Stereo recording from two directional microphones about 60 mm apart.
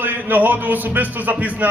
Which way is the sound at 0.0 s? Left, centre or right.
Right.